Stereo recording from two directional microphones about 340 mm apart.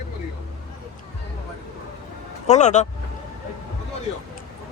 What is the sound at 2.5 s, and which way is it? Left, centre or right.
Speech, left.